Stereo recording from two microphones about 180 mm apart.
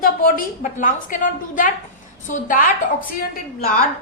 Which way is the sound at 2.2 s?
45° left (ahead or behind).